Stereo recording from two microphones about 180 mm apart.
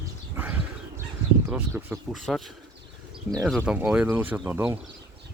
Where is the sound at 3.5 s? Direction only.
5° right (ahead or behind).